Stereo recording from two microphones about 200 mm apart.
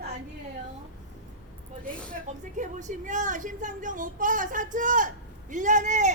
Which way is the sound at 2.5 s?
40° right (ahead or behind).